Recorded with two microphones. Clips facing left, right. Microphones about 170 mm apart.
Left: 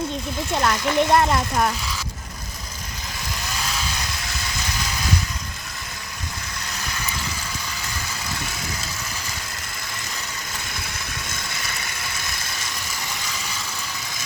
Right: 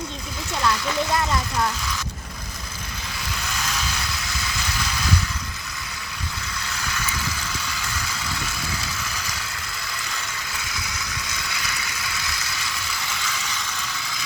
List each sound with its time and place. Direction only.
0.5 s speech: 55° left (ahead or behind)
11.3 s ratchet: 50° left (ahead or behind)